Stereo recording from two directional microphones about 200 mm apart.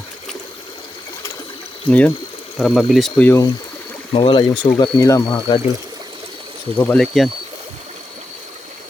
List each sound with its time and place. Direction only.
1.9 s speech: 5° left (ahead or behind)
4.1 s speech: 25° left (ahead or behind)
6.7 s speech: 5° left (ahead or behind)